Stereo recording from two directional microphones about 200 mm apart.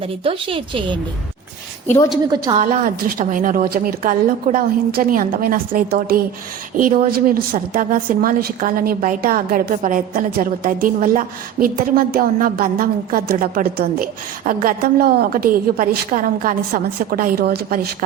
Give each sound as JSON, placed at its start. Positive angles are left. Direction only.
{"t": 0.0, "sound": "a woman's voice", "side_deg": -25}
{"t": 2.2, "sound": "a woman's voice", "side_deg": -20}
{"t": 3.2, "sound": "a woman's voice", "side_deg": -40}